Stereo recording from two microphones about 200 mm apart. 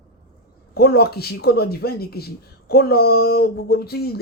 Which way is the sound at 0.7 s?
50° left (ahead or behind).